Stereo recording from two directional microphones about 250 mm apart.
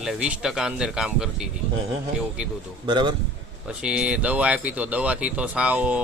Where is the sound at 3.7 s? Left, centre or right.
Centre.